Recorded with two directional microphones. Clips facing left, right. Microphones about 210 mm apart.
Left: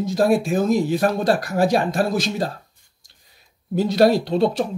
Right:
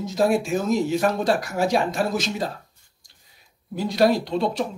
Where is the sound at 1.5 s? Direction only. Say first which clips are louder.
Left 3 dB; 35° left (ahead or behind).